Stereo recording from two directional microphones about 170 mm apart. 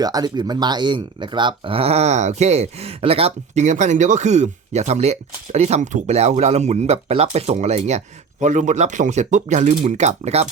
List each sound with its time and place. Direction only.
0.0 s speech: 20° right (ahead or behind); by 10.5 s 40° right (ahead or behind)